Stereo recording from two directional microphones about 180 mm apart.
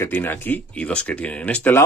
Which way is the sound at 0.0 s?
10° left (ahead or behind).